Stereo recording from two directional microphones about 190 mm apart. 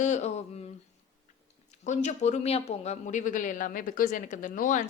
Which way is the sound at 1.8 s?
40° left (ahead or behind).